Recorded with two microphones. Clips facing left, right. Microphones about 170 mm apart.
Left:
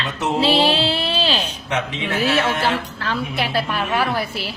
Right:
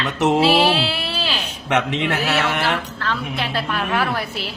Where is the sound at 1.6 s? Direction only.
75° right (ahead or behind).